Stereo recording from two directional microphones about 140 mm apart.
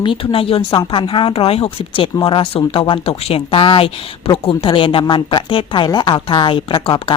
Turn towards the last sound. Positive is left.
turn(degrees=35)  # may be behind; listen again after turning